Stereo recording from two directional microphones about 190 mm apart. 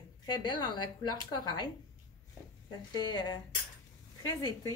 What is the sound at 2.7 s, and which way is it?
Speech, 20° left (ahead or behind).